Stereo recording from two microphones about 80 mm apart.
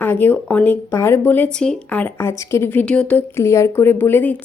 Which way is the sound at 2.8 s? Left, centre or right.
Centre.